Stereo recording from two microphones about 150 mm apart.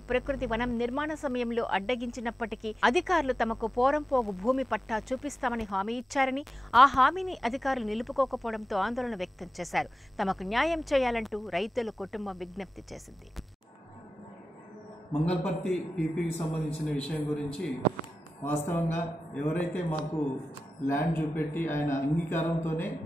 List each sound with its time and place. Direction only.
0.1 s speech: centre (ahead or behind)
15.4 s speech: 5° left (ahead or behind)
18.4 s speech: 15° left (ahead or behind)